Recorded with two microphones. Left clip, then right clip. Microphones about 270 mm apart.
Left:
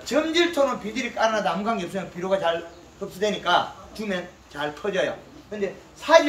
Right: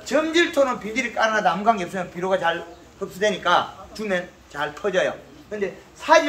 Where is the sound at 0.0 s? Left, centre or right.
Centre.